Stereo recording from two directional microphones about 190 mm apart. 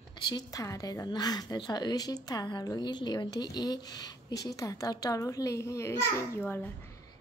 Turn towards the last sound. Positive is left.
turn(degrees=10)  # may be behind; listen again after turning